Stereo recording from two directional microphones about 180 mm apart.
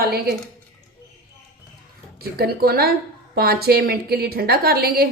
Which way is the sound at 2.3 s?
60° right (ahead or behind).